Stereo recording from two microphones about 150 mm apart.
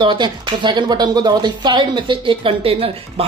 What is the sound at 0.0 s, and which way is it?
Speech, 30° right (ahead or behind).